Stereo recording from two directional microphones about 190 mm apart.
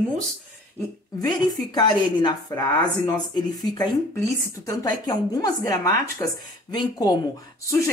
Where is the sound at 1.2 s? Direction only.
20° left (ahead or behind).